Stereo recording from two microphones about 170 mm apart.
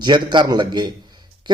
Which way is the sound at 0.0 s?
25° right (ahead or behind).